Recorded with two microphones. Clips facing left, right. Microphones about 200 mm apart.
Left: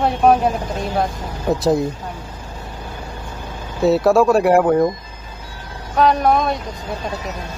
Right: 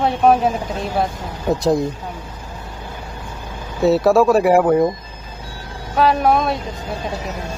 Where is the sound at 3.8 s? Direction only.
Centre (ahead or behind).